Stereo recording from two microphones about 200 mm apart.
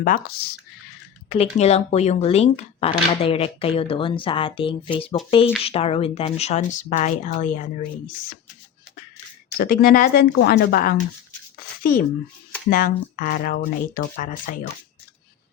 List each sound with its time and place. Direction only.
0.0 s speech: 50° left (ahead or behind)
1.5 s speech: 30° left (ahead or behind)
9.6 s speech: 45° left (ahead or behind)